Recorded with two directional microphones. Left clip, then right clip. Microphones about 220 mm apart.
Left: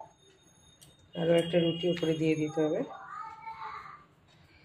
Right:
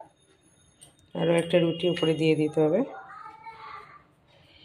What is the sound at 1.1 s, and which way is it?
Speech, 50° right (ahead or behind).